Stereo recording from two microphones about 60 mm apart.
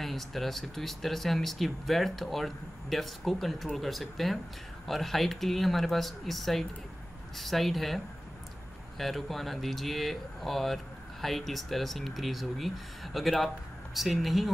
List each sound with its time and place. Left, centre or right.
0.0 s speech: centre